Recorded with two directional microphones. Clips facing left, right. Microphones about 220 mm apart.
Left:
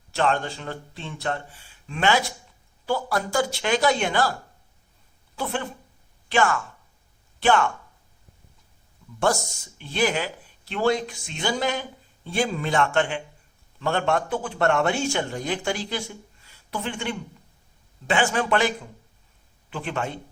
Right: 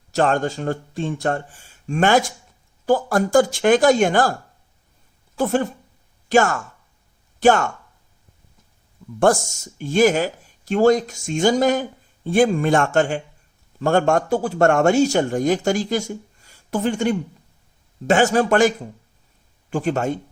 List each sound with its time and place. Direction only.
0.1 s speech: 45° right (ahead or behind)
5.4 s speech: 45° right (ahead or behind)
9.2 s speech: 50° right (ahead or behind)
19.7 s speech: 45° right (ahead or behind)